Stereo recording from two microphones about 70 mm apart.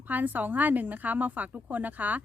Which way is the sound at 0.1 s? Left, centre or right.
Right.